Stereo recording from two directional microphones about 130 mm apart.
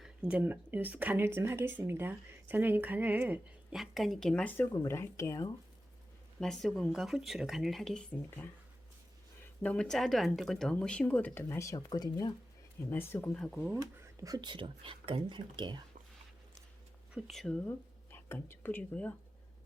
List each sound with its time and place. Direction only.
0.0 s speech: 5° right (ahead or behind)
3.8 s speech: centre (ahead or behind)
4.5 s speech: 15° left (ahead or behind)
6.4 s speech: 5° left (ahead or behind)
8.1 s speech: 15° left (ahead or behind)
9.6 s speech: 5° left (ahead or behind); by 12.3 s 30° left (ahead or behind)
12.9 s speech: 15° left (ahead or behind)
13.7 s speech: 25° right (ahead or behind)
17.2 s speech: centre (ahead or behind)
17.7 s speech: 15° left (ahead or behind)